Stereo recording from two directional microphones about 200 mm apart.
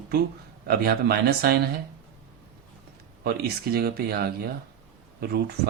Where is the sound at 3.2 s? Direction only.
55° right (ahead or behind).